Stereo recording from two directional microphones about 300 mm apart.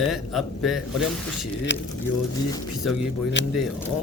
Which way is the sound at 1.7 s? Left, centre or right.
Left.